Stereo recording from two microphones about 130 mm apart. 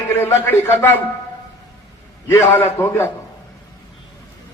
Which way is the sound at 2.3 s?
20° left (ahead or behind).